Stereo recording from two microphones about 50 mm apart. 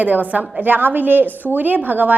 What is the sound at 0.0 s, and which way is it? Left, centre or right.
A woman's voice, right.